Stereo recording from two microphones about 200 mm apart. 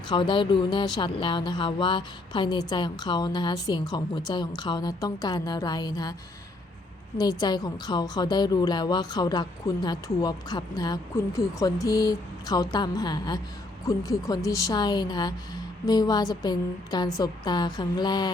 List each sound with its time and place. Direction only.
0.1 s a woman's voice: 25° left (ahead or behind)
7.2 s a woman's voice: 20° left (ahead or behind)